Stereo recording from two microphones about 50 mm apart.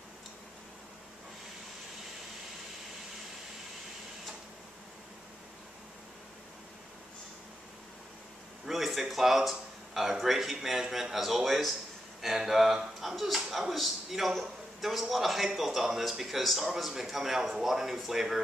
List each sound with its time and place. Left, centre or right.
8.6 s speech: centre